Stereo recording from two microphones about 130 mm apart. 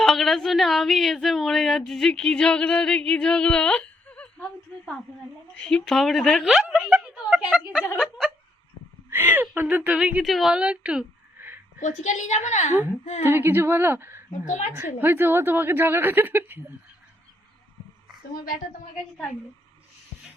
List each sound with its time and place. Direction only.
0.0 s a woman's voice: centre (ahead or behind)
7.6 s a sound: 5° right (ahead or behind)
9.0 s a woman's voice: 15° right (ahead or behind)
11.8 s a woman's voice: 70° left (ahead or behind)
13.2 s speech: 15° right (ahead or behind)
14.4 s a woman's voice: 70° left (ahead or behind)
15.0 s speech: 15° right (ahead or behind)